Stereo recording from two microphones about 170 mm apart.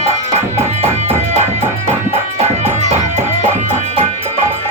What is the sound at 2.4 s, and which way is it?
Music, 40° right (ahead or behind).